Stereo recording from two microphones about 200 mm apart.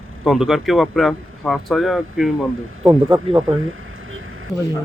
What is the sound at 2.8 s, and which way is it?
Speech, 15° right (ahead or behind).